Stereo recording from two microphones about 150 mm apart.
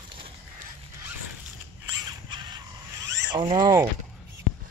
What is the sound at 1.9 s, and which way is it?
Zipper, 30° right (ahead or behind).